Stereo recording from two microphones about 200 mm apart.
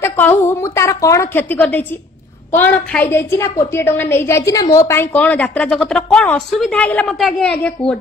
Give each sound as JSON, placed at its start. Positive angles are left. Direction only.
{"t": 0.0, "sound": "a woman's voice", "side_deg": 10}